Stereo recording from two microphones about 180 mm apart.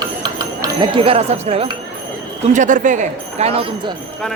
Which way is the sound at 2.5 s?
45° right (ahead or behind).